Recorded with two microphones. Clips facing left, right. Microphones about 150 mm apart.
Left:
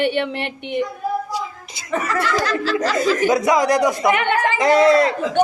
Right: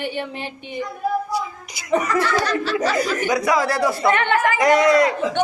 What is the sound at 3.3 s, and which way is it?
Speech, 20° left (ahead or behind).